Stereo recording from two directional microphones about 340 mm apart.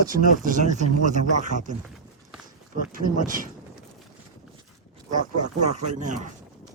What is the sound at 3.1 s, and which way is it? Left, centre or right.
Speech, right.